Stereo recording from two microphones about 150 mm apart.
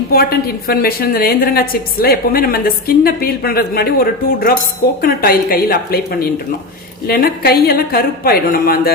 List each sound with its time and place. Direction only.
0.1 s a woman's voice: 90° left